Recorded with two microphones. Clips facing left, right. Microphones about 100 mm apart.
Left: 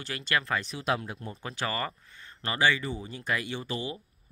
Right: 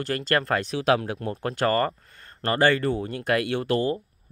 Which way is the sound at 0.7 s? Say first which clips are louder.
Right 8 dB; 90° right.